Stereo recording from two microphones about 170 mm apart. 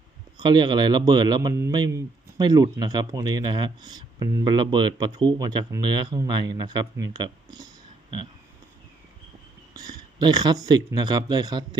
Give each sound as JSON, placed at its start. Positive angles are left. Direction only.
{"t": 0.3, "sound": "speech", "side_deg": -25}
{"t": 9.7, "sound": "speech", "side_deg": -25}